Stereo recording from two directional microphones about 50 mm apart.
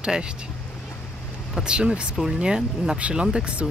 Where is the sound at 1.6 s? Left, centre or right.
Centre.